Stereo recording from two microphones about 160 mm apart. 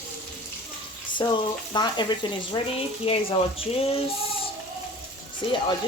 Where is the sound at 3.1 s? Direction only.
35° left (ahead or behind).